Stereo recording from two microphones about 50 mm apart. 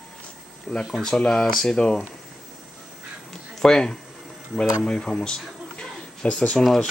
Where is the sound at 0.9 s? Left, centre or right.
Centre.